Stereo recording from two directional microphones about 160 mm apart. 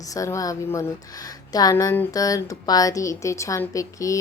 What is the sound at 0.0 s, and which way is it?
Speech, 20° left (ahead or behind).